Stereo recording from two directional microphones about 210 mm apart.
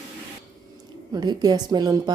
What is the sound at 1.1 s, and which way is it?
Speech, 20° right (ahead or behind).